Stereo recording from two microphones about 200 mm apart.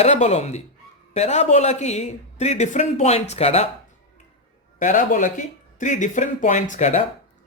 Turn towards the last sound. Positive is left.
turn(degrees=35)  # may be behind; listen again after turning